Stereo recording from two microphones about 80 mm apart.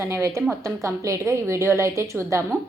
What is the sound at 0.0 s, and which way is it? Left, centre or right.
A woman's voice, right.